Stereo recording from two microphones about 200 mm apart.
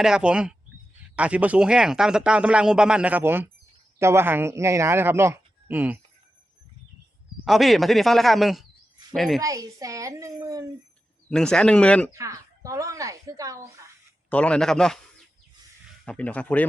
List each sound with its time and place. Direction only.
0.0 s a man's voice: 5° right (ahead or behind)
7.4 s a man's voice: centre (ahead or behind)
9.4 s a man's voice: 15° right (ahead or behind)
11.3 s a man's voice: 5° left (ahead or behind)
12.1 s speech: 15° right (ahead or behind)
14.3 s a man's voice: 5° left (ahead or behind)
16.0 s speech: 5° left (ahead or behind)